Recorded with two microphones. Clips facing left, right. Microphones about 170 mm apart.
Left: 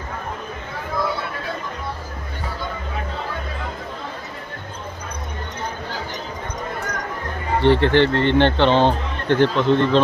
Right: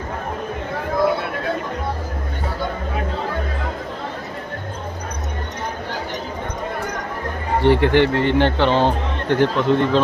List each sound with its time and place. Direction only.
7.6 s speech: 10° right (ahead or behind)